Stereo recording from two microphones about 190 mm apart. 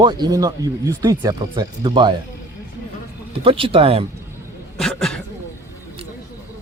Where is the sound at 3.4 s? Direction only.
30° right (ahead or behind).